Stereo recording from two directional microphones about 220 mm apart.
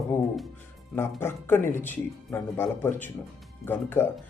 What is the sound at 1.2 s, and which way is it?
Speech, 10° left (ahead or behind).